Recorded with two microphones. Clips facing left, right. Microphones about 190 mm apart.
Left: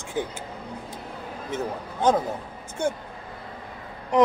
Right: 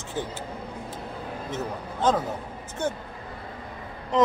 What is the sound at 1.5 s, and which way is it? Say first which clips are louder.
A man's voice: left 4 dB; 10° left (ahead or behind).